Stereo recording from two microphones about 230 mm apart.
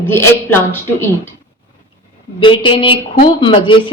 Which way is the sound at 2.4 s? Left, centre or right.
Left.